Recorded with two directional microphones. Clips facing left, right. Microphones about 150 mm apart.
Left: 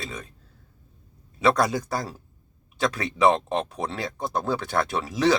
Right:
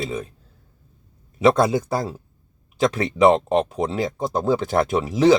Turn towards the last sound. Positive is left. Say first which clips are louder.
# right 6 dB
turn(degrees=-25)  # may be behind; listen again after turning